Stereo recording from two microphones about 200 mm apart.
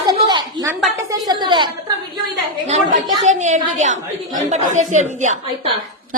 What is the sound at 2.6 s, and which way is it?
A woman's voice, 40° right (ahead or behind).